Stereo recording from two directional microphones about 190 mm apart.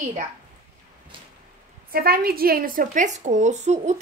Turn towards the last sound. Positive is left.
turn(degrees=-35)  # may be behind; listen again after turning